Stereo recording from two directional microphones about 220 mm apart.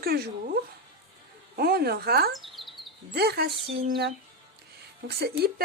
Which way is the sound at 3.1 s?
45° right (ahead or behind).